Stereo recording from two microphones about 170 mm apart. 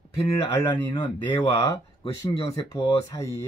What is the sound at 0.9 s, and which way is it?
A man's voice, 25° left (ahead or behind).